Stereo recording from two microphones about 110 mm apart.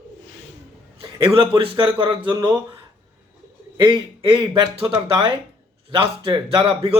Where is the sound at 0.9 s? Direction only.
55° right (ahead or behind).